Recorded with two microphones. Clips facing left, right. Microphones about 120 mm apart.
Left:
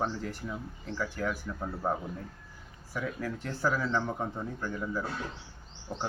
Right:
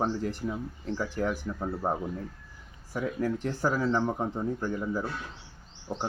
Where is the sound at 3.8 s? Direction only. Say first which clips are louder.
Right 4 dB; 25° right (ahead or behind).